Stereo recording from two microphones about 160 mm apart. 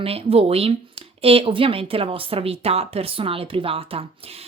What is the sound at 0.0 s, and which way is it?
Speech, 35° right (ahead or behind).